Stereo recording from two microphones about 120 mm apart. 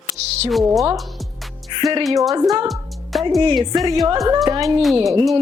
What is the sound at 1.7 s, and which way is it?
Speech, 40° right (ahead or behind).